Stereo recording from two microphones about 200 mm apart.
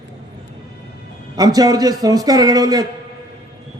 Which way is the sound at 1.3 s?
20° right (ahead or behind).